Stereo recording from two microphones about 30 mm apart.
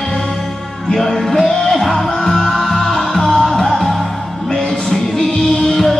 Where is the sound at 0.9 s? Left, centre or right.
Centre.